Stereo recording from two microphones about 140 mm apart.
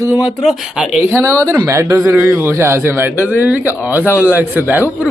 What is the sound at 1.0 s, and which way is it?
A man's voice, 20° right (ahead or behind).